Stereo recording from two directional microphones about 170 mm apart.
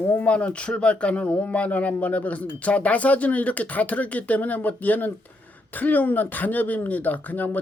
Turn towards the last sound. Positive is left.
turn(degrees=10)  # may be behind; listen again after turning